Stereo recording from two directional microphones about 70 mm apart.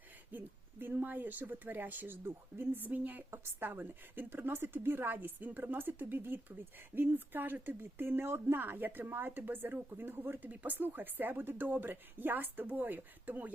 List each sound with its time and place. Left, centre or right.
0.3 s speech: right